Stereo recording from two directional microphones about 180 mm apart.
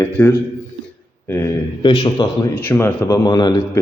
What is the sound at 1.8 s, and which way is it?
Speech, 25° left (ahead or behind).